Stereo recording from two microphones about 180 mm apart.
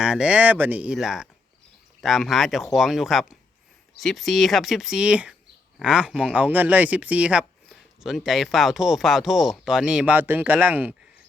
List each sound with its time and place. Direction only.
0.0 s speech: 5° right (ahead or behind)